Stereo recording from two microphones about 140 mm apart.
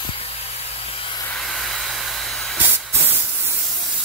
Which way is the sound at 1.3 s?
Centre (ahead or behind).